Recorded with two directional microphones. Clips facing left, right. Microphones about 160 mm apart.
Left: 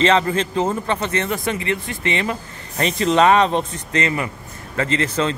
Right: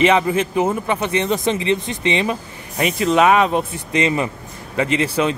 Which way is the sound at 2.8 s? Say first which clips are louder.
Right 1 dB; 5° right (ahead or behind).